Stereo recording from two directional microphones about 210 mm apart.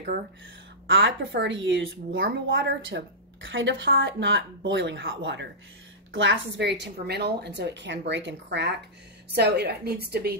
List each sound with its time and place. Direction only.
0.8 s a woman's voice: 60° right (ahead or behind)